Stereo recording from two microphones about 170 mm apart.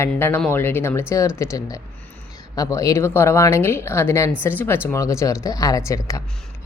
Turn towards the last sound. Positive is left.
turn(degrees=20)  # may be behind; listen again after turning